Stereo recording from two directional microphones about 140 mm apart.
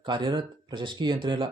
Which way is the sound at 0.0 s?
35° right (ahead or behind).